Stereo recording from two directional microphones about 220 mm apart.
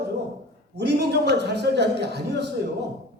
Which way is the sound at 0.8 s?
50° right (ahead or behind).